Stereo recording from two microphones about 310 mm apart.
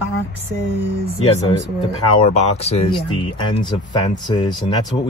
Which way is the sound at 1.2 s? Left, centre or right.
Centre.